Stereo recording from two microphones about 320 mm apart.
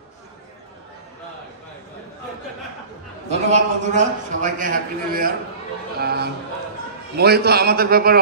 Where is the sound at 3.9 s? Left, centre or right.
Right.